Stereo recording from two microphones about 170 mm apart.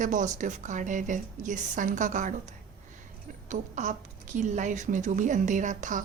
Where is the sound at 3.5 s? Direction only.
45° right (ahead or behind).